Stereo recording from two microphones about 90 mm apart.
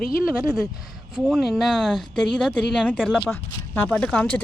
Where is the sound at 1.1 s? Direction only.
Centre (ahead or behind).